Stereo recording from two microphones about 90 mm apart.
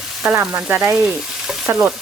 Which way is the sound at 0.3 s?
25° right (ahead or behind).